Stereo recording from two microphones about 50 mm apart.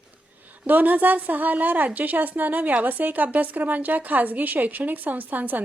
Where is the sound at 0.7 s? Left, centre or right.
Right.